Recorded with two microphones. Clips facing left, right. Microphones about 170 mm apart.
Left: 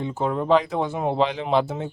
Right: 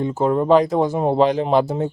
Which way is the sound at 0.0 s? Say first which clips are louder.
Right 6 dB; 40° right (ahead or behind).